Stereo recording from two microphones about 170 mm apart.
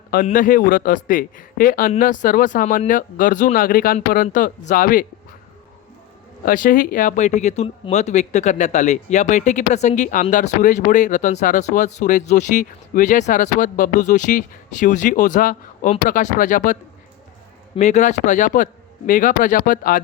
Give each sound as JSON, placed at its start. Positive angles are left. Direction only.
{"t": 0.3, "sound": "speech", "side_deg": 55}
{"t": 6.4, "sound": "speech", "side_deg": 55}
{"t": 17.7, "sound": "speech", "side_deg": 45}